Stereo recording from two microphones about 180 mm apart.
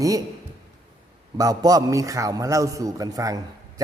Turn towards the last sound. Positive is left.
turn(degrees=-20)  # may be behind; listen again after turning